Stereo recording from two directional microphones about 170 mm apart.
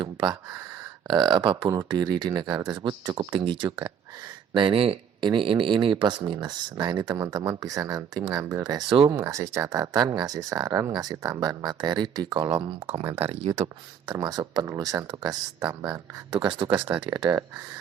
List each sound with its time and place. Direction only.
0.0 s a sound: 25° right (ahead or behind)
1.0 s speech: 25° right (ahead or behind)
14.1 s speech: 20° right (ahead or behind)